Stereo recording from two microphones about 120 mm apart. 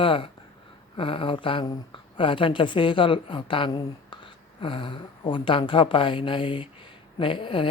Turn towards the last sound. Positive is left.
turn(degrees=45)  # may be behind; listen again after turning